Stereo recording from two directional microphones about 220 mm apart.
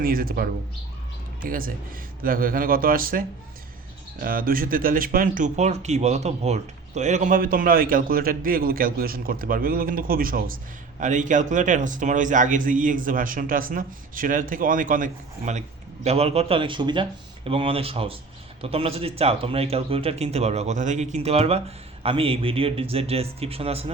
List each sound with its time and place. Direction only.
0.0 s speech: 40° right (ahead or behind)
1.5 s speech: 40° right (ahead or behind)